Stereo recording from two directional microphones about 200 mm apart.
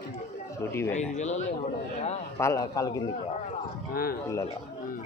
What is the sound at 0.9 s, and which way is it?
Speech, 35° left (ahead or behind).